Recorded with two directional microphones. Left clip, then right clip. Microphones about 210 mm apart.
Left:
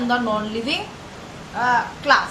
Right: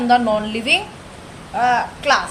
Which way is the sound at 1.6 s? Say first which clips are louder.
Right 2 dB; 45° right (ahead or behind).